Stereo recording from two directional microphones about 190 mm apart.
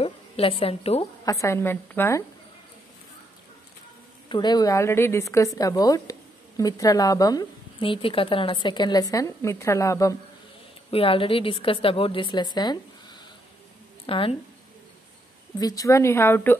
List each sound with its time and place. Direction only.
0.0 s a woman's voice: 30° left (ahead or behind)
1.2 s a woman's voice: 15° left (ahead or behind)
4.3 s a woman's voice: 20° left (ahead or behind)
10.9 s speech: 30° left (ahead or behind)
15.6 s a woman's voice: 20° left (ahead or behind)